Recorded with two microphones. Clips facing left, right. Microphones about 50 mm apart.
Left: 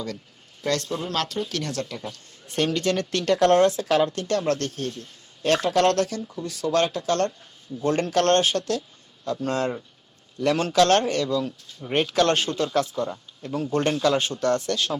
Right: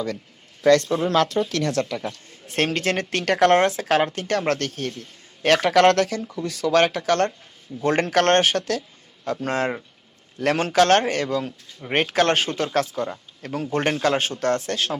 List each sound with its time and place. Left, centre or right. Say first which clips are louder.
0.9 s speech: right 7 dB; right
4.4 s speech: right 1 dB; right
7.8 s speech: right 2 dB; right
8.3 s speech: right 2 dB; right
9.5 s speech: right 2 dB; right
10.3 s speech: right 1 dB; right